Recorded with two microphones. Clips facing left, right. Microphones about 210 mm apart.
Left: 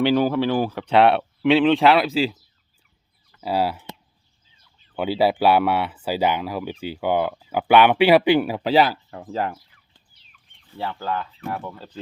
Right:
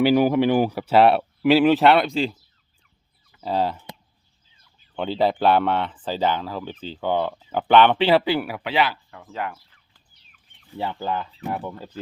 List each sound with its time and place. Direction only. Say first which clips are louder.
0.0 s speech: right 2 dB; 10° right (ahead or behind); by 2.3 s 5° left (ahead or behind)
3.4 s speech: left 1 dB; 10° left (ahead or behind)
4.9 s speech: left 2 dB; 5° left (ahead or behind); by 10.0 s 35° left (ahead or behind)
10.8 s speech: right 1 dB; 15° right (ahead or behind)